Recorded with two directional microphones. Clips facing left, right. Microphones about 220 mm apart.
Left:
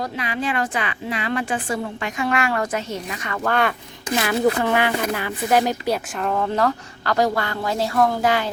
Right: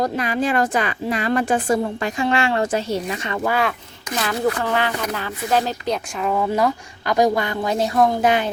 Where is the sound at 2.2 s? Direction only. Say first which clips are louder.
Right 2 dB; 25° right (ahead or behind).